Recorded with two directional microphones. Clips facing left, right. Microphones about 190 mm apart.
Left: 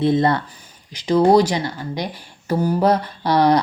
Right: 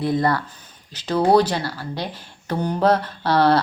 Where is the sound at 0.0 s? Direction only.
25° left (ahead or behind).